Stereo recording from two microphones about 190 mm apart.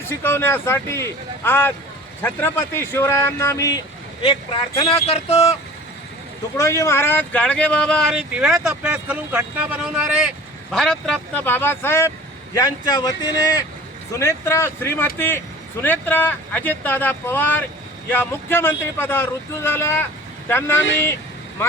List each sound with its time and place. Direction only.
0.1 s speech: 10° left (ahead or behind)
5.0 s speech: 30° left (ahead or behind)
6.6 s speech: 15° left (ahead or behind)